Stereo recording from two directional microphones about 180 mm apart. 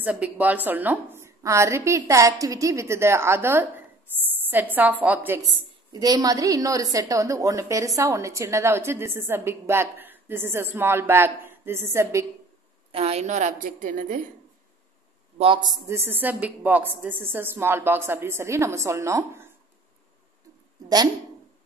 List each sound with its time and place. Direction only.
0.0 s a woman's voice: 10° right (ahead or behind)
12.9 s a woman's voice: 35° right (ahead or behind)
15.3 s a man's voice: 30° right (ahead or behind)
16.1 s a woman's voice: 10° right (ahead or behind)